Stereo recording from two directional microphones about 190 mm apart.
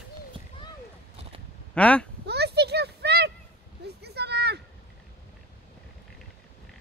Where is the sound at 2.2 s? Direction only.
60° right (ahead or behind).